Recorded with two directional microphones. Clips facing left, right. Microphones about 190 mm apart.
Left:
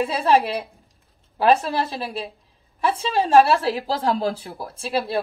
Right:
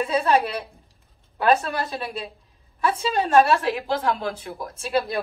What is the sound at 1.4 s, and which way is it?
Speech, 35° left (ahead or behind).